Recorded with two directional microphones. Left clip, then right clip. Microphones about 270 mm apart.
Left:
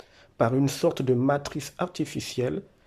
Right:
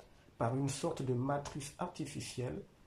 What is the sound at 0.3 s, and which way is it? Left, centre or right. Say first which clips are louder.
Speech: left 13 dB; left.